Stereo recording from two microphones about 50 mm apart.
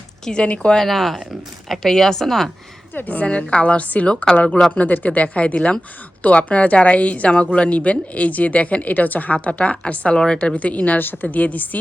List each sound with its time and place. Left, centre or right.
0.3 s speech: left
0.8 s speech: centre
2.9 s a woman's voice: left
3.5 s speech: left
5.5 s speech: centre
11.0 s a woman's voice: left